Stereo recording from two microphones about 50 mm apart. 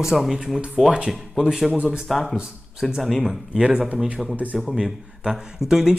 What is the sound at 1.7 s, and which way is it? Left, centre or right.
Speech, right.